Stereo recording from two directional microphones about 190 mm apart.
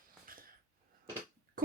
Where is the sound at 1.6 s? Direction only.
50° right (ahead or behind).